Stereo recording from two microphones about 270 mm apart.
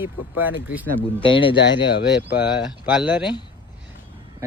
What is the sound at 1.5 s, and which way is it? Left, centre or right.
Speech, left.